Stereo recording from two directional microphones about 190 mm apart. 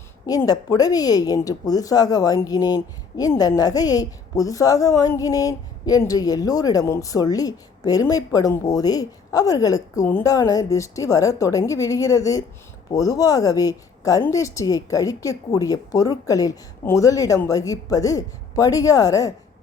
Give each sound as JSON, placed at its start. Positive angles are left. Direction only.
{"t": 0.3, "sound": "speech", "side_deg": 20}